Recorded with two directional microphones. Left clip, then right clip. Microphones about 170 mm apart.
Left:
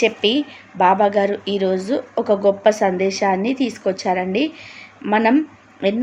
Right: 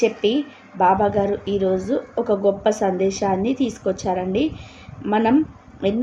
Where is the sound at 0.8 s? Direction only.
20° left (ahead or behind).